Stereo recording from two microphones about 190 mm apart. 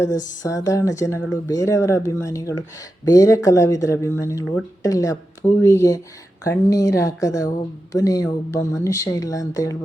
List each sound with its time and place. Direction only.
0.4 s speech: 15° left (ahead or behind)